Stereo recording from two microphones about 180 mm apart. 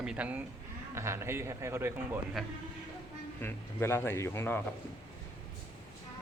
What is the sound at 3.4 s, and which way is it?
Speech, 15° left (ahead or behind).